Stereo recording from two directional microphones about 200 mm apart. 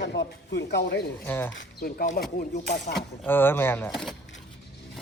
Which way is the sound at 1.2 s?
10° left (ahead or behind).